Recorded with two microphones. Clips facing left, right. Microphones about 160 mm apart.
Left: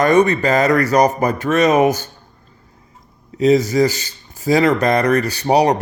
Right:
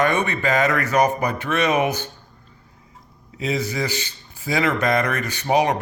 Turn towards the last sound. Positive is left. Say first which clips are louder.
# left 5 dB
turn(degrees=35)  # may be behind; listen again after turning